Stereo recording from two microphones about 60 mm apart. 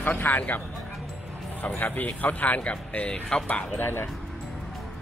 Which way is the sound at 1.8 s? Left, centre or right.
Left.